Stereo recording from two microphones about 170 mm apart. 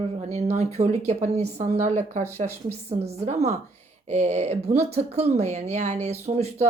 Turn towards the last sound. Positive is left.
turn(degrees=-40)  # may be behind; listen again after turning